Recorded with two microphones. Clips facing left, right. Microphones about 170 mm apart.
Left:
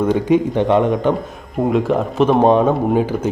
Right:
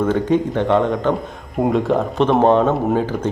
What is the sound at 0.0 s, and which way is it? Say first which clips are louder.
Speech: left 2 dB; 15° left (ahead or behind).